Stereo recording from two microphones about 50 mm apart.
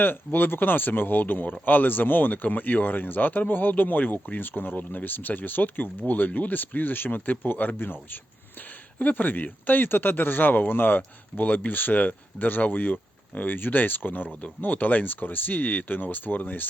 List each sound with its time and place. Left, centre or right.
0.0 s speech: left
9.0 s speech: left